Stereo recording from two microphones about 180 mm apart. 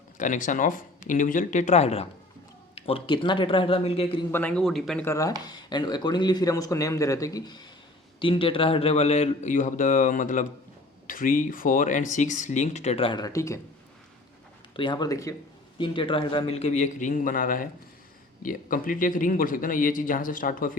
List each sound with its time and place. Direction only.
0.2 s speech: 45° left (ahead or behind)
4.3 s speech: 10° left (ahead or behind)
5.0 s speech: 20° left (ahead or behind)
14.8 s speech: 25° left (ahead or behind); by 20.7 s 50° left (ahead or behind)